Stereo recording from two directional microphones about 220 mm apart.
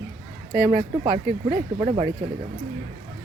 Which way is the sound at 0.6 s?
20° right (ahead or behind).